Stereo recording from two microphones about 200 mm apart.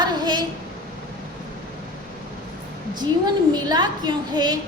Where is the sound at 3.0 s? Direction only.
20° right (ahead or behind).